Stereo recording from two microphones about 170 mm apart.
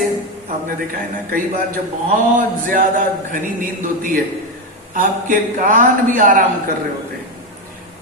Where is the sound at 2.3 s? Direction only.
55° right (ahead or behind).